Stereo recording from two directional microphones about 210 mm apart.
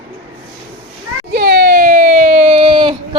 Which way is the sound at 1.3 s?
50° right (ahead or behind).